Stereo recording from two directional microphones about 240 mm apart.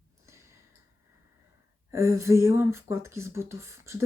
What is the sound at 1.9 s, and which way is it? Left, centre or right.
Speech, centre.